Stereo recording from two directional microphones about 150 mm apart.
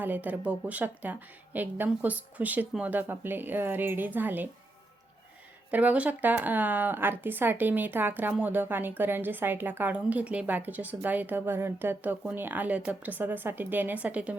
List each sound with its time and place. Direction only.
0.0 s speech: 10° right (ahead or behind)
5.7 s speech: 10° right (ahead or behind)